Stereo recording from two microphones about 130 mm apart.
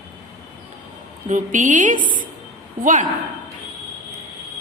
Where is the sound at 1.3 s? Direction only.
80° right.